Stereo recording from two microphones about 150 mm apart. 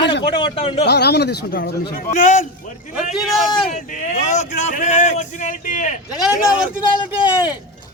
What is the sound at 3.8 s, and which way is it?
Speech, 55° left (ahead or behind).